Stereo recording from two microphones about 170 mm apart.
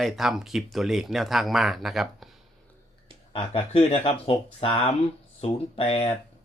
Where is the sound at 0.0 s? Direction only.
Centre (ahead or behind).